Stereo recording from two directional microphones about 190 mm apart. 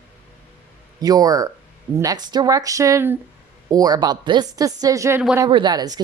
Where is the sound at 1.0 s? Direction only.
20° right (ahead or behind).